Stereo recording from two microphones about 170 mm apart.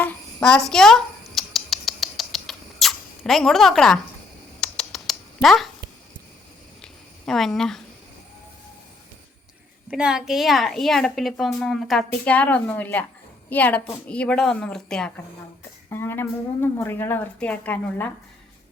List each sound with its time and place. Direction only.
0.0 s a sound: 10° left (ahead or behind)
0.7 s rodents: centre (ahead or behind)
4.6 s typing: 5° left (ahead or behind)
6.8 s a sound: centre (ahead or behind)
9.9 s a woman's voice: 5° right (ahead or behind)
15.9 s a woman's voice: 15° left (ahead or behind)